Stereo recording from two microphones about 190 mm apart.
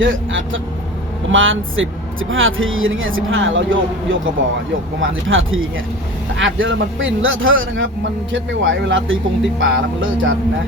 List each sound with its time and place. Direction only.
0.0 s music: 85° right
1.3 s speech: 90° right
9.6 s music: 85° right